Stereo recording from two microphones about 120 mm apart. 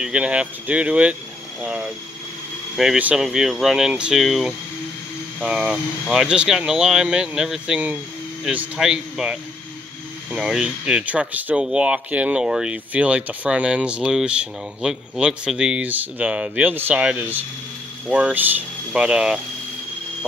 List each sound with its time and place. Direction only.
0.0 s speech: 10° right (ahead or behind)